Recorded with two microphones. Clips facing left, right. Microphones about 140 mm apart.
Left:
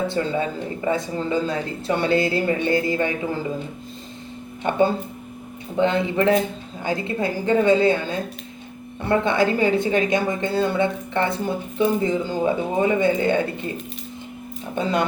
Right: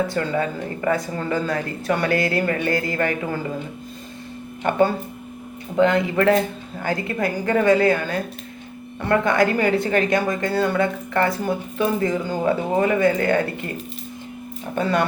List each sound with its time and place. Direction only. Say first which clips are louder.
0.1 s a woman's voice: even; 25° left (ahead or behind)
5.8 s a woman's voice: right 2 dB; 25° left (ahead or behind)
14.8 s a woman's voice: right 1 dB; 20° left (ahead or behind)